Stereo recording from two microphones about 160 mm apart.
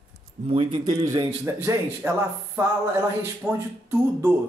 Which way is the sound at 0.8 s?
20° right (ahead or behind).